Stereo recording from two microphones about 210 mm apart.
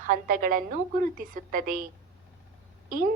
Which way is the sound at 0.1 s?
40° right (ahead or behind).